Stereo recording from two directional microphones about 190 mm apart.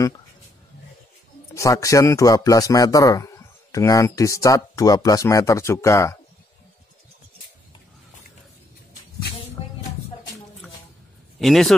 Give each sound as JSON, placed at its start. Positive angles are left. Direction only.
{"t": 1.5, "sound": "a man's voice", "side_deg": 15}
{"t": 11.3, "sound": "a man's voice", "side_deg": 0}